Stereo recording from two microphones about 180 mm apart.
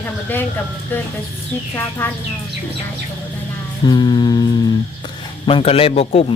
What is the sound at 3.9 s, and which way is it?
Speech, 25° left (ahead or behind).